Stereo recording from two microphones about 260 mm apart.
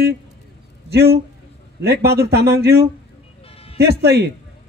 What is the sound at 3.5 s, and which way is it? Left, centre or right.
Vehicle, left.